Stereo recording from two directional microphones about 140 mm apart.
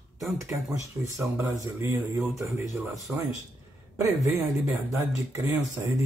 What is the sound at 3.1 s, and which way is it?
Speech, centre (ahead or behind).